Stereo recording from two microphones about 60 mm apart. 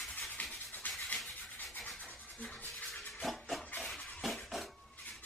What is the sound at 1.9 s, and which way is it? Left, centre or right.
Toothbrush, left.